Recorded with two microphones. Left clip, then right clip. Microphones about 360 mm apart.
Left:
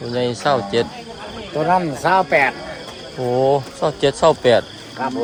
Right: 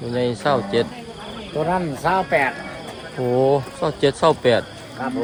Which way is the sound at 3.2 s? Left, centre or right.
Centre.